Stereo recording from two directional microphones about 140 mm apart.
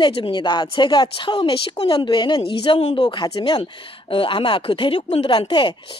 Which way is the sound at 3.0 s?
30° left (ahead or behind).